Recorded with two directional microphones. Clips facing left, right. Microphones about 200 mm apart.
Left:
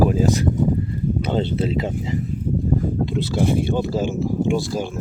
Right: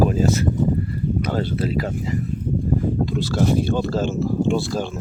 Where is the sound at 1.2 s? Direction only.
25° left (ahead or behind).